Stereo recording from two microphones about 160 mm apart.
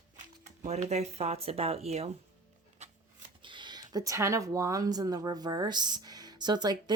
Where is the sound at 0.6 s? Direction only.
45° right (ahead or behind).